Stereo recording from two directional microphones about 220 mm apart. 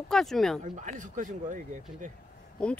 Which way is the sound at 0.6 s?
35° right (ahead or behind).